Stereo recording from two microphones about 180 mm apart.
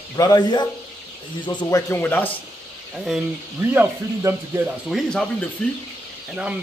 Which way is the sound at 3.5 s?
15° right (ahead or behind).